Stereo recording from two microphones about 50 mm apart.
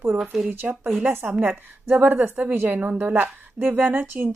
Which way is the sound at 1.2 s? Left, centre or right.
Right.